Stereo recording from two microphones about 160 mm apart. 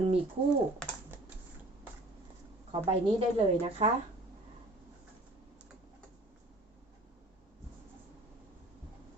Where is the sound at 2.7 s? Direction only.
35° right (ahead or behind).